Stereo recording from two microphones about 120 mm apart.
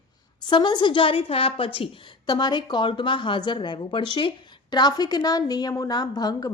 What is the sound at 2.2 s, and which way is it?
A woman's voice, 35° left (ahead or behind).